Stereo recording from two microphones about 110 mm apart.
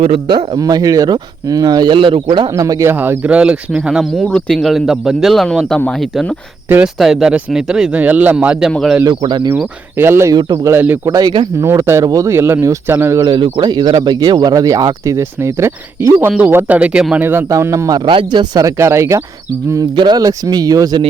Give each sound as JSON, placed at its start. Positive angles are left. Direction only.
{"t": 0.5, "sound": "speech", "side_deg": -35}
{"t": 2.5, "sound": "speech", "side_deg": -30}
{"t": 2.9, "sound": "speech", "side_deg": -20}
{"t": 8.7, "sound": "speech", "side_deg": 0}
{"t": 9.0, "sound": "speech", "side_deg": -40}
{"t": 10.0, "sound": "speech", "side_deg": -25}
{"t": 10.3, "sound": "speech", "side_deg": -40}
{"t": 10.7, "sound": "speech", "side_deg": -20}
{"t": 13.1, "sound": "speech", "side_deg": -40}
{"t": 17.5, "sound": "speech", "side_deg": -30}
{"t": 18.8, "sound": "speech", "side_deg": -25}
{"t": 19.7, "sound": "speech", "side_deg": -40}